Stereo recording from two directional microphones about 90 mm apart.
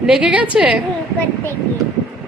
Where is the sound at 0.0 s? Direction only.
10° right (ahead or behind).